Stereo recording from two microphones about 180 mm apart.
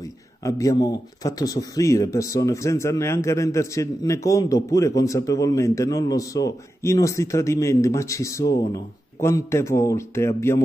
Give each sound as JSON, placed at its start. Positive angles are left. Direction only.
{"t": 0.0, "sound": "speech", "side_deg": 20}